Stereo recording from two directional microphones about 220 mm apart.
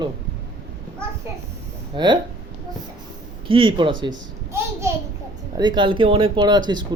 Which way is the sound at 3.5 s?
25° right (ahead or behind).